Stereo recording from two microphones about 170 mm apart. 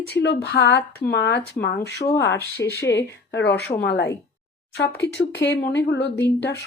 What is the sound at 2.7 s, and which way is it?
Speech, 15° left (ahead or behind).